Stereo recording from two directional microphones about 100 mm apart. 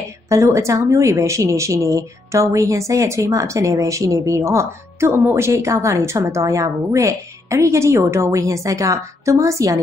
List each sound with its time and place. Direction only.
0.3 s a woman's voice: 30° right (ahead or behind)